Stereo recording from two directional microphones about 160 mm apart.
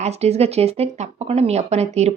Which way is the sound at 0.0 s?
40° right (ahead or behind).